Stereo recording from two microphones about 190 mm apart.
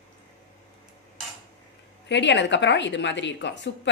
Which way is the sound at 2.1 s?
70° left (ahead or behind).